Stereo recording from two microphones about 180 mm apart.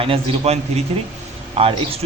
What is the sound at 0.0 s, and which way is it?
A man's voice, 35° right (ahead or behind).